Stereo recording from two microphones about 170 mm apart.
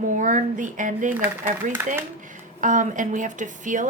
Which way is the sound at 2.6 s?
50° right (ahead or behind).